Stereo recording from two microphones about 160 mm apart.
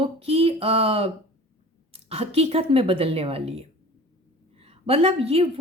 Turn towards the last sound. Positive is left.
turn(degrees=-40)  # may be behind; listen again after turning